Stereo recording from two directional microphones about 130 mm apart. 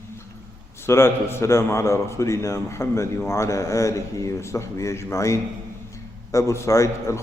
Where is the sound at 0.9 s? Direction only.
20° left (ahead or behind).